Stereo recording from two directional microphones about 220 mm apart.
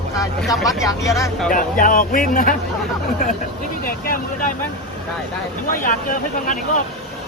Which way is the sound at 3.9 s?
40° left (ahead or behind).